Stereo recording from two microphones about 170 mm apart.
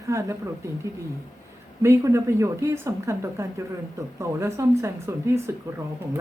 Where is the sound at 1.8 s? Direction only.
15° right (ahead or behind).